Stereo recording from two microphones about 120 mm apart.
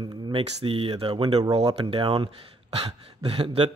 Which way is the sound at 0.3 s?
50° right (ahead or behind).